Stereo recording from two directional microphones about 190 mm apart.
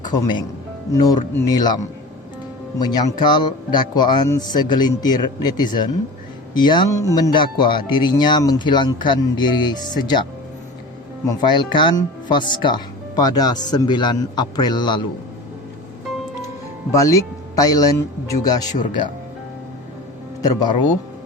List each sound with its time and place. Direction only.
0.0 s speech: 20° left (ahead or behind)
11.3 s speech: 20° left (ahead or behind)
16.9 s speech: 15° left (ahead or behind)
20.4 s speech: 20° left (ahead or behind)